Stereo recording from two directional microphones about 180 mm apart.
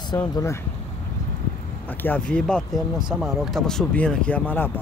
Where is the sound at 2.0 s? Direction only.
10° left (ahead or behind).